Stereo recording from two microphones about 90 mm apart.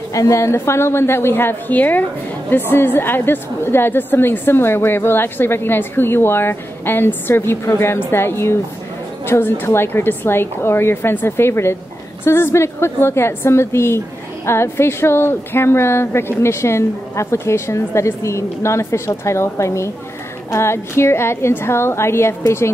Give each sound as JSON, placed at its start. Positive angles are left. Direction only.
{"t": 0.1, "sound": "a woman's voice", "side_deg": 35}